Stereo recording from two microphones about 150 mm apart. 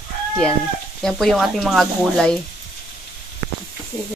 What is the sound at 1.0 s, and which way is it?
Speech, centre (ahead or behind).